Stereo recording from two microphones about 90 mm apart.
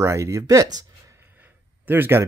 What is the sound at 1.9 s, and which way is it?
Speech, 25° right (ahead or behind).